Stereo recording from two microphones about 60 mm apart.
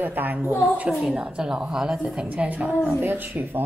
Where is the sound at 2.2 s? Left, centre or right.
Right.